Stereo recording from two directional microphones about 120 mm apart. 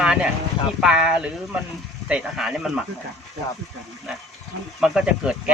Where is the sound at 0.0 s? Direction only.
5° right (ahead or behind).